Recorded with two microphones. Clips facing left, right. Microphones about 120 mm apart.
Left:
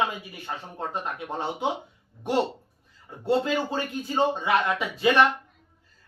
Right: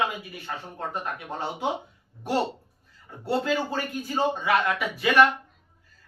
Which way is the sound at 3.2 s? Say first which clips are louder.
Left 2 dB; 25° left (ahead or behind).